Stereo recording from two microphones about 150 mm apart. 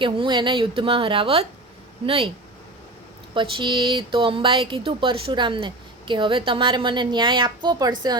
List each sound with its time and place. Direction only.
0.0 s speech: 35° right (ahead or behind)
3.3 s speech: 30° right (ahead or behind)